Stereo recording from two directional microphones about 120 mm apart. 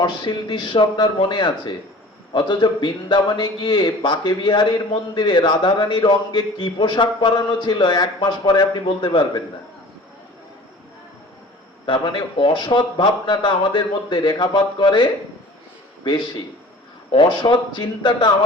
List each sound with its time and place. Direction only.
0.0 s a man's voice: 40° left (ahead or behind)
11.9 s a man's voice: 40° left (ahead or behind)